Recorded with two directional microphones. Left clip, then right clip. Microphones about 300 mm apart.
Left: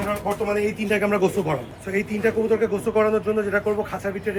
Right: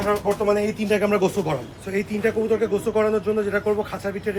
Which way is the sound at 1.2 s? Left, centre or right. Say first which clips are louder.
Left 1 dB; centre.